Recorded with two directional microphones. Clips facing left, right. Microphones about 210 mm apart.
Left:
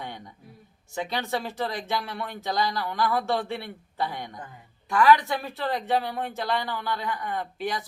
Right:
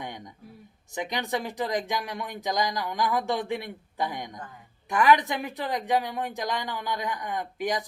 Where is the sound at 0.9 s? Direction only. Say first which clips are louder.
Even; 15° right (ahead or behind).